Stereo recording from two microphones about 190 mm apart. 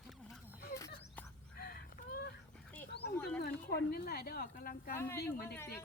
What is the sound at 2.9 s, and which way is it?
Wild animals, 60° left (ahead or behind).